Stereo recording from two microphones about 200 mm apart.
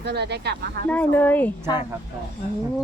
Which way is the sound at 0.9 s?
10° left (ahead or behind).